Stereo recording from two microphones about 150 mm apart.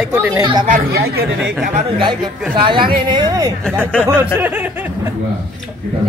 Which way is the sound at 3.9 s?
10° left (ahead or behind).